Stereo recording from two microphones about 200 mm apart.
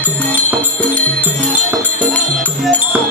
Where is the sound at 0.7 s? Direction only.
5° left (ahead or behind).